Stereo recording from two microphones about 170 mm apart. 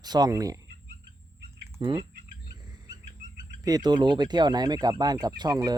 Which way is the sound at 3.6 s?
20° right (ahead or behind).